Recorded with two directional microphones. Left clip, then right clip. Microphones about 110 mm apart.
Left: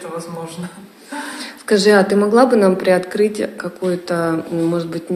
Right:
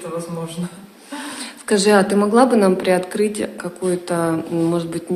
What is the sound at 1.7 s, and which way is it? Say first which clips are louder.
Speech: left 2 dB; 15° left (ahead or behind).